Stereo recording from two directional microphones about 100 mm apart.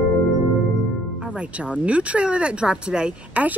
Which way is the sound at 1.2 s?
10° right (ahead or behind).